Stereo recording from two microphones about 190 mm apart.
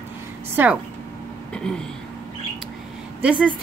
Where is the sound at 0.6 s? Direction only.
10° right (ahead or behind).